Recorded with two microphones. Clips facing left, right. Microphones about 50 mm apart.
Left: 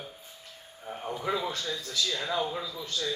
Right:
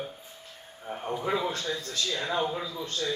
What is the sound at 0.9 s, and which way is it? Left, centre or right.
A man's voice, right.